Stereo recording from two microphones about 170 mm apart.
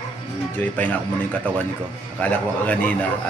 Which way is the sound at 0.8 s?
10° left (ahead or behind).